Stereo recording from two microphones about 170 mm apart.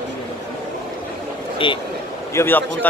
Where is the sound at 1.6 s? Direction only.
30° left (ahead or behind).